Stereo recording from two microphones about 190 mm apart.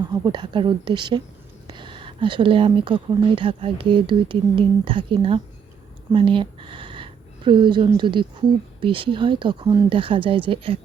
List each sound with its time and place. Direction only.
0.1 s speech: 25° right (ahead or behind)